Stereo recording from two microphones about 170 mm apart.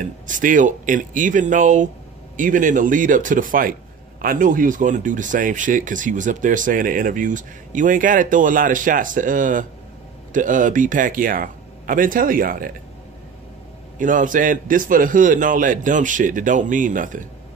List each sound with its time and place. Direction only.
0.0 s speech: 50° right (ahead or behind)
13.9 s speech: 50° right (ahead or behind)